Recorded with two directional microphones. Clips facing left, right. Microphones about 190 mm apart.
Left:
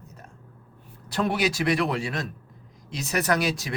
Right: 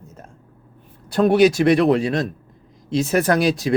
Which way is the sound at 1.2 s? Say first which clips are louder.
Right 11 dB; 25° right (ahead or behind).